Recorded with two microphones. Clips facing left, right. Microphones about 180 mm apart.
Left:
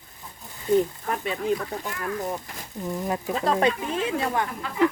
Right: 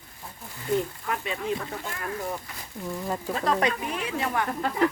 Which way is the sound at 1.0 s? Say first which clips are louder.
Left 3 dB; 40° left (ahead or behind).